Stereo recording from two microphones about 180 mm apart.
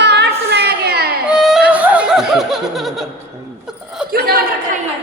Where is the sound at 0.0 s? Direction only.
70° right (ahead or behind).